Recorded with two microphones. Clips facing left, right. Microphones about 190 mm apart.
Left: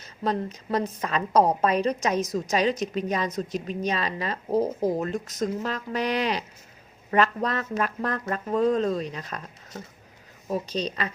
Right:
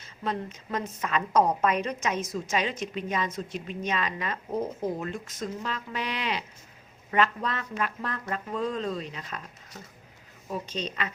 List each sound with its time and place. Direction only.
0.0 s a woman's voice: 40° left (ahead or behind)